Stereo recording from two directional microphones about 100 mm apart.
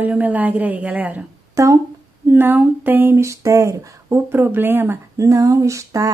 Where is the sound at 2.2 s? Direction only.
20° right (ahead or behind).